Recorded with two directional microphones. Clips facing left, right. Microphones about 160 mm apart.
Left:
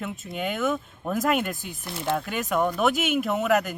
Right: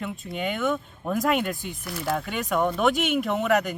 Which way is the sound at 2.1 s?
Centre (ahead or behind).